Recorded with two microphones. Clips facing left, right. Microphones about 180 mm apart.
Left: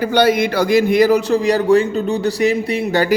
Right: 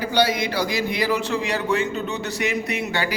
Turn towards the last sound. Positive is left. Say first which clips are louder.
# left 9 dB
turn(degrees=40)  # may be behind; listen again after turning